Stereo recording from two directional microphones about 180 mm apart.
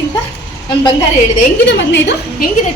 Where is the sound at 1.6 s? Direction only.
70° left (ahead or behind).